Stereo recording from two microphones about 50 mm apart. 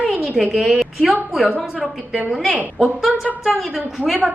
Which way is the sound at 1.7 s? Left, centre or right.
Right.